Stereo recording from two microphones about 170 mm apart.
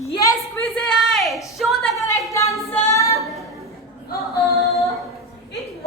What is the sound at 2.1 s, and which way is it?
Speech, 20° left (ahead or behind).